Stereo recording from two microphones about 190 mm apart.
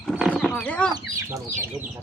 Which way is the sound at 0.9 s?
15° right (ahead or behind).